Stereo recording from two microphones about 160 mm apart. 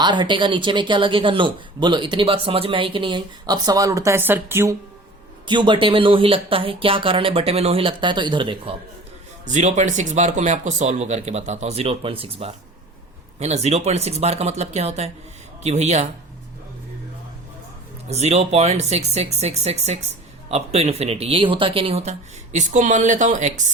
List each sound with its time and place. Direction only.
0.0 s speech: 30° right (ahead or behind)
5.5 s speech: 30° right (ahead or behind)
9.5 s speech: 50° right (ahead or behind)
18.1 s speech: 40° right (ahead or behind)
22.5 s speech: 50° right (ahead or behind)